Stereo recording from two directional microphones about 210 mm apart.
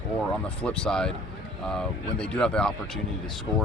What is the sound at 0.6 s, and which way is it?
Speech, 5° left (ahead or behind).